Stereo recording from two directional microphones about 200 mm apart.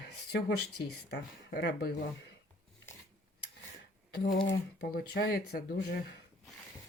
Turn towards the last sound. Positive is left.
turn(degrees=55)  # may be behind; listen again after turning